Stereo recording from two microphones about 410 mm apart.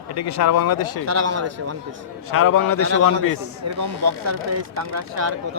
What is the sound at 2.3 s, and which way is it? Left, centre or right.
Speech, left.